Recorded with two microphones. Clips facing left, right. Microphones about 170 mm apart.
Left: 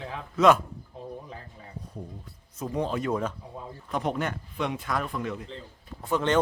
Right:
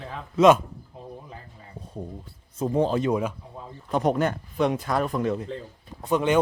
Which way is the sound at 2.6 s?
30° right (ahead or behind).